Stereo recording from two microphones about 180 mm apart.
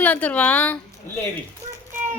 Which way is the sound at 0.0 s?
10° left (ahead or behind).